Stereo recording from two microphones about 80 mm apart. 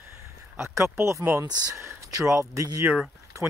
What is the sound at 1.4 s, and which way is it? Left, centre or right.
Speech, right.